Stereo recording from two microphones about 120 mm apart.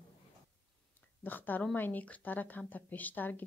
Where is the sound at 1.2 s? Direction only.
15° left (ahead or behind).